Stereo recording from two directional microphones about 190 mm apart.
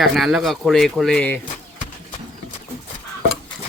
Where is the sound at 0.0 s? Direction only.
Centre (ahead or behind).